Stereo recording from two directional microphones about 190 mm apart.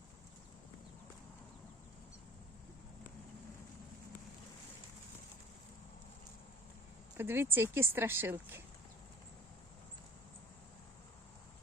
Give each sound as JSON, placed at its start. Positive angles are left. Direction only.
{"t": 7.2, "sound": "speech", "side_deg": -10}